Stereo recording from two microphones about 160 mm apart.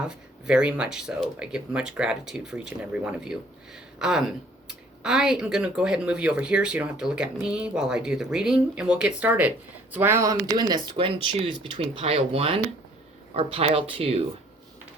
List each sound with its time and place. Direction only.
0.0 s speech: 5° right (ahead or behind); by 14.3 s 40° right (ahead or behind)